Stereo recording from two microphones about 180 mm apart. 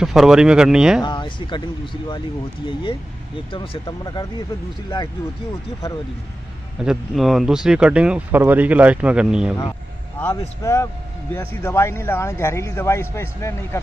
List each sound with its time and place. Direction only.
0.0 s speech: centre (ahead or behind)
1.0 s speech: 25° left (ahead or behind)
6.8 s speech: centre (ahead or behind)
9.6 s vehicle: 15° left (ahead or behind)
10.6 s a man's voice: 15° left (ahead or behind)